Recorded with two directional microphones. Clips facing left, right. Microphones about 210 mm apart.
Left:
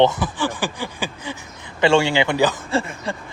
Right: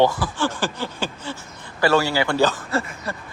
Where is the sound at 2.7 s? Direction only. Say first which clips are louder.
Left 3 dB; 25° left (ahead or behind).